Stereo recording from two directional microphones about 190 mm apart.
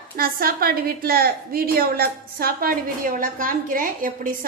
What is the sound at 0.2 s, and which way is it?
A woman's voice, 50° right (ahead or behind).